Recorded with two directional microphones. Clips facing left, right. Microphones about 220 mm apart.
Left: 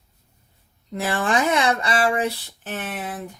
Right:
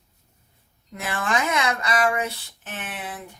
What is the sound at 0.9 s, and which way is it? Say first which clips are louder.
Speech: left 4 dB; 30° left (ahead or behind).